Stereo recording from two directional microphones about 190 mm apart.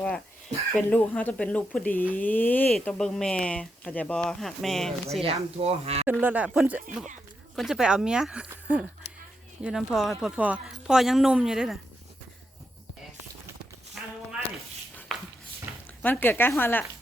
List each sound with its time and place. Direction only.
0.8 s speech: 10° left (ahead or behind)
5.2 s speech: 30° right (ahead or behind)
6.1 s speech: 10° right (ahead or behind)
15.1 s a sound: centre (ahead or behind)
16.0 s speech: 10° left (ahead or behind)